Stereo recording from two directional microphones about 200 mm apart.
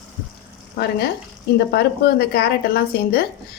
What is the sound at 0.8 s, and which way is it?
A woman's voice, 55° left (ahead or behind).